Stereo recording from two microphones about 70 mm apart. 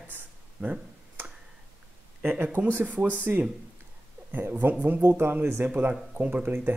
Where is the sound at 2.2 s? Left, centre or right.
Right.